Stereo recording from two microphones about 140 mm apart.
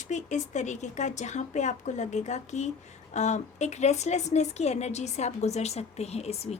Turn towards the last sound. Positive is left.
turn(degrees=50)  # may be behind; listen again after turning